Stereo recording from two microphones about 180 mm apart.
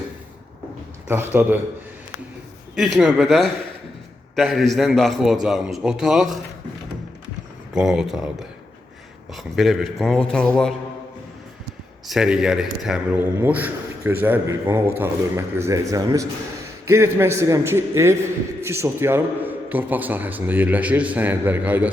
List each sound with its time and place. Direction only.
1.0 s a man's voice: 10° right (ahead or behind)
2.7 s a man's voice: 5° right (ahead or behind)
7.8 s a man's voice: 5° right (ahead or behind)
9.3 s a man's voice: centre (ahead or behind)
12.0 s a man's voice: 5° right (ahead or behind)